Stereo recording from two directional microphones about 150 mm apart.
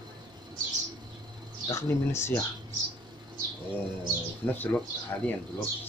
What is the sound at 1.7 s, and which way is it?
Speech, 20° left (ahead or behind).